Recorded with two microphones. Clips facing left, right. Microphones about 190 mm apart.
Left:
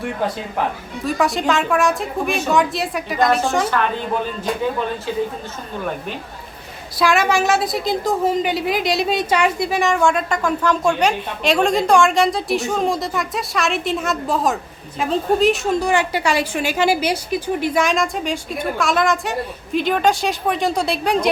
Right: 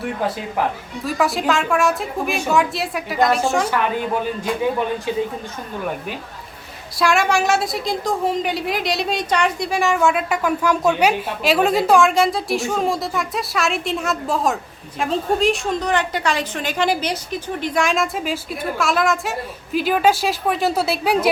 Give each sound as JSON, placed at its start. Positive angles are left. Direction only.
{"t": 1.0, "sound": "a woman's voice", "side_deg": 0}
{"t": 7.0, "sound": "a woman's voice", "side_deg": 0}